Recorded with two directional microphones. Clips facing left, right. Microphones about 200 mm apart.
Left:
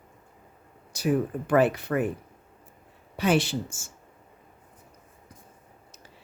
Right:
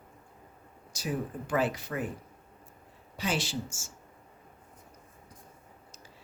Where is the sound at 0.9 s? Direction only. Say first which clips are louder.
Left 9 dB; 60° left (ahead or behind).